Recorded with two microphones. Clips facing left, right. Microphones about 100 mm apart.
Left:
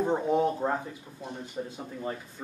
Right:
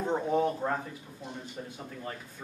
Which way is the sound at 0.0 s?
15° left (ahead or behind).